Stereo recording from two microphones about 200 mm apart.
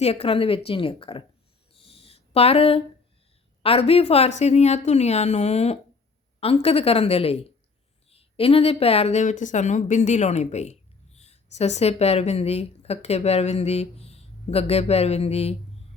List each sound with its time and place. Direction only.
0.0 s speech: 30° left (ahead or behind)
1.7 s a sound: 30° left (ahead or behind)
3.6 s a woman's voice: 30° left (ahead or behind)